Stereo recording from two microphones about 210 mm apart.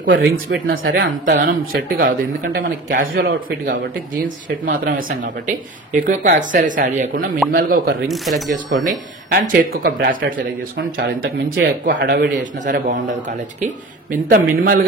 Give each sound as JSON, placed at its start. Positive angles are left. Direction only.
{"t": 0.1, "sound": "speech", "side_deg": -55}
{"t": 1.4, "sound": "a man's voice", "side_deg": -45}
{"t": 8.1, "sound": "speech", "side_deg": 0}
{"t": 8.7, "sound": "a man's voice", "side_deg": -40}
{"t": 14.1, "sound": "a man's voice", "side_deg": -45}